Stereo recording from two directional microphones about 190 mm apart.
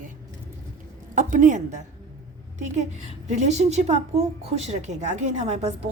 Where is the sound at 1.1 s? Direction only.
40° right (ahead or behind).